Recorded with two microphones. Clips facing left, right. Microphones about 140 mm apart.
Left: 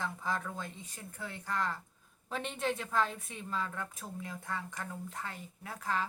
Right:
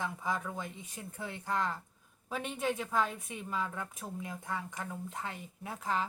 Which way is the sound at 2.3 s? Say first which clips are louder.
Right 1 dB; 5° right (ahead or behind).